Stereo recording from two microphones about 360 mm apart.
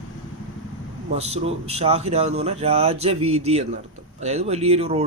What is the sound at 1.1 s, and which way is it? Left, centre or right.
Speech, centre.